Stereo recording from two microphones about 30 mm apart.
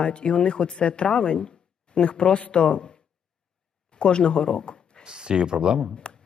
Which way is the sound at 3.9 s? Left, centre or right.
Left.